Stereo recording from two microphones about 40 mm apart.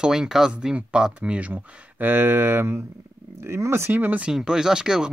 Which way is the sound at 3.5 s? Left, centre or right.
Right.